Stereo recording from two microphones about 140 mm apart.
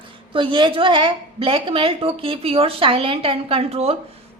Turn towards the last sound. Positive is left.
turn(degrees=-45)  # may be behind; listen again after turning